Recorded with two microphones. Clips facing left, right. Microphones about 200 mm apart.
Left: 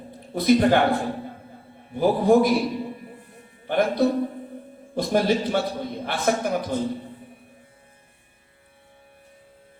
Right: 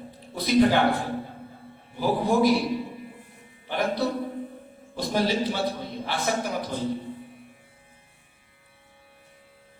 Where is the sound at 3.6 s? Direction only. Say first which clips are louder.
Left 5 dB; 55° left (ahead or behind).